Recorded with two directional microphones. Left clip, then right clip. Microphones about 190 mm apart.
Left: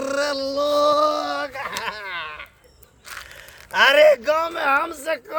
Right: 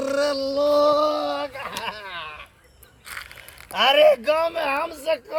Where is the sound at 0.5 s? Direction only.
15° left (ahead or behind).